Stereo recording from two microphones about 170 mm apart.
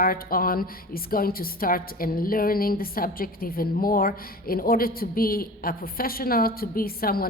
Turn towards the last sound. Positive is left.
turn(degrees=60)  # may be behind; listen again after turning